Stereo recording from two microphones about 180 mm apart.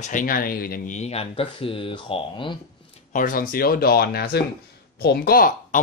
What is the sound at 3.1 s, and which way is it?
Speech, 50° left (ahead or behind).